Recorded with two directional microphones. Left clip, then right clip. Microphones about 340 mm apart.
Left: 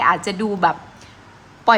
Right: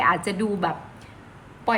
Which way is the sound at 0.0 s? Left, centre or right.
Centre.